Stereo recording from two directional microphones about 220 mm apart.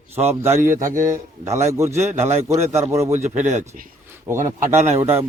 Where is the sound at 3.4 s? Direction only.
30° right (ahead or behind).